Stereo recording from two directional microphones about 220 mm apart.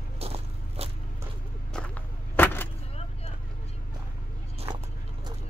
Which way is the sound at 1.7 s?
5° left (ahead or behind).